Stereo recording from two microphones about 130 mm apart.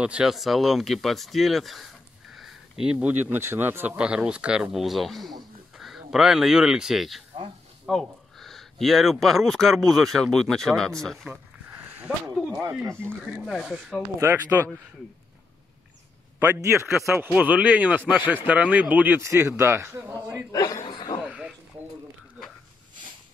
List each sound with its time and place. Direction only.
0.0 s speech: 5° right (ahead or behind)
13.3 s speech: centre (ahead or behind)
14.5 s a man's voice: 20° right (ahead or behind)
16.3 s speech: 15° right (ahead or behind)
20.5 s a sound: 35° left (ahead or behind)
21.2 s a sound: 5° right (ahead or behind)